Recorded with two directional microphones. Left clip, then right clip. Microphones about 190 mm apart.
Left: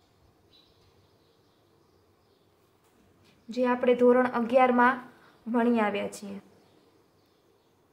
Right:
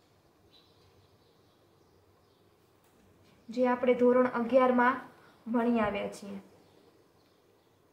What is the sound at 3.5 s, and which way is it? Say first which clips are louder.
A woman's voice: left 2 dB; 45° left (ahead or behind).